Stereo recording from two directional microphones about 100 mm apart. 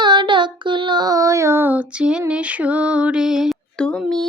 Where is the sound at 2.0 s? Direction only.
10° right (ahead or behind).